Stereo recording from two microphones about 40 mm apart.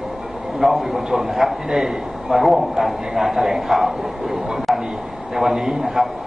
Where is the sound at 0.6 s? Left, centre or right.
Centre.